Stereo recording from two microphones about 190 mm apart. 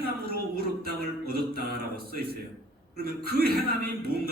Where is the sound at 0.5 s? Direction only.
55° right (ahead or behind).